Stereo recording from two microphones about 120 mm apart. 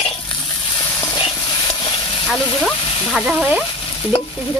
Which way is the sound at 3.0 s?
5° right (ahead or behind).